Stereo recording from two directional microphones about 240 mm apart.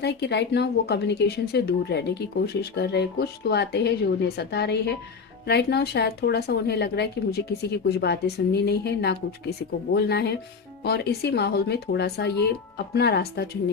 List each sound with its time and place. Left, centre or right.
0.0 s speech: left